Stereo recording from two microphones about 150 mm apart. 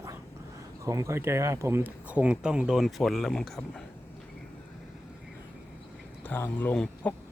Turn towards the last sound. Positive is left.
turn(degrees=10)  # may be behind; listen again after turning